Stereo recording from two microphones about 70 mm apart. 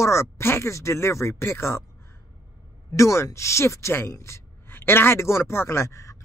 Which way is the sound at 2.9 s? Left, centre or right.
Left.